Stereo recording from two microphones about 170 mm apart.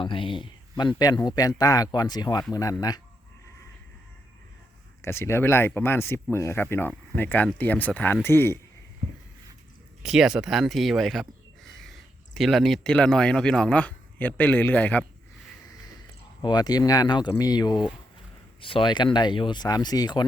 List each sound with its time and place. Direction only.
0.0 s speech: 30° left (ahead or behind)
5.0 s speech: 15° left (ahead or behind)
10.0 s speech: 5° right (ahead or behind)
16.4 s speech: 25° left (ahead or behind)